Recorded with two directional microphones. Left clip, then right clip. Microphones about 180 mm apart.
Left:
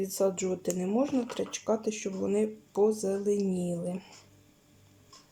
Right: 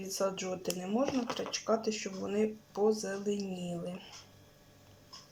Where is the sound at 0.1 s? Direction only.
25° left (ahead or behind).